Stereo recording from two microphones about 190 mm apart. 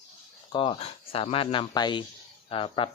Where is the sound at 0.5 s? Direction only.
25° left (ahead or behind).